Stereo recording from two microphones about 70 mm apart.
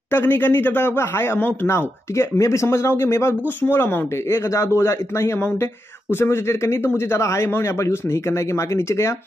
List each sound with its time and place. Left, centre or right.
0.1 s speech: left